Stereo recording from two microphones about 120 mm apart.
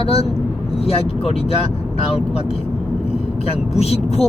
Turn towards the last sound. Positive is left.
turn(degrees=60)  # may be behind; listen again after turning